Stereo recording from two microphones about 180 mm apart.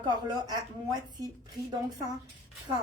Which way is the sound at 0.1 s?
20° right (ahead or behind).